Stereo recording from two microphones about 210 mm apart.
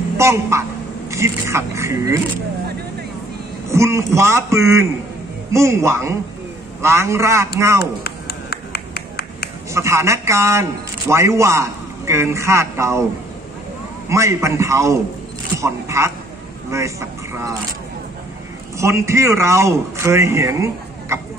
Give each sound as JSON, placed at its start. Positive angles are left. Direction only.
{"t": 0.2, "sound": "a man's voice", "side_deg": -15}
{"t": 3.7, "sound": "a man's voice", "side_deg": -15}
{"t": 7.8, "sound": "a sound", "side_deg": 50}
{"t": 9.7, "sound": "a man's voice", "side_deg": -15}
{"t": 14.0, "sound": "a man's voice", "side_deg": -15}
{"t": 18.8, "sound": "a man's voice", "side_deg": -15}